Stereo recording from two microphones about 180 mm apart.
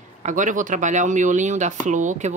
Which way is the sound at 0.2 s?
45° right (ahead or behind).